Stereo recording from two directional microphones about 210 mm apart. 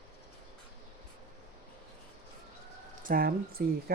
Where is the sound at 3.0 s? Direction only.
40° right (ahead or behind).